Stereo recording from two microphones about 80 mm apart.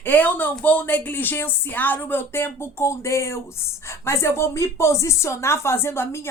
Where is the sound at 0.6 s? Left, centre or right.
Left.